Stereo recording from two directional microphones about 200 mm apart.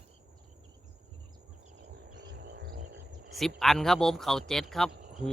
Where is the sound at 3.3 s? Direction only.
Centre (ahead or behind).